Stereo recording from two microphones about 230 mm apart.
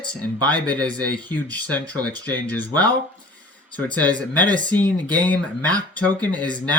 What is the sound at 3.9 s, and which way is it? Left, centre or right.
Speech, centre.